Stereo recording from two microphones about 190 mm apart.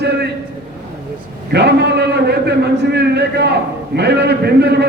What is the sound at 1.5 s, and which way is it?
A man's voice, 60° right (ahead or behind).